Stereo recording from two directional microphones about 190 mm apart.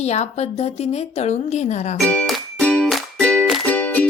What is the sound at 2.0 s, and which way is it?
Music, 5° left (ahead or behind).